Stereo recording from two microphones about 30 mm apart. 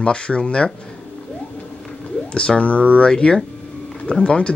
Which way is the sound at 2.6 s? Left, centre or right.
Left.